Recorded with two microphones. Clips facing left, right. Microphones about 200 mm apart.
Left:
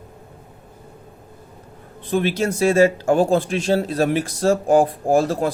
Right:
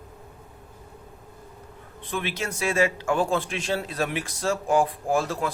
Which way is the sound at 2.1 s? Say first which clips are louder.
Left 10 dB; 40° left (ahead or behind).